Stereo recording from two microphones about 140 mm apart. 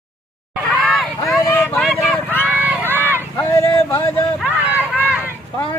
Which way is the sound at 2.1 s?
15° left (ahead or behind).